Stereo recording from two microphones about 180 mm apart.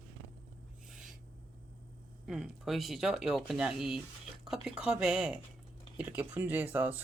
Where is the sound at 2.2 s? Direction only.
Centre (ahead or behind).